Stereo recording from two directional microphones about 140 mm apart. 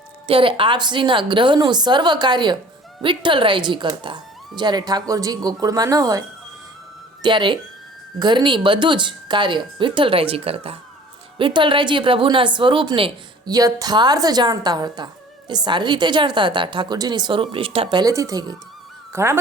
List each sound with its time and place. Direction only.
0.3 s a woman's voice: 40° right (ahead or behind); by 19.4 s 20° right (ahead or behind)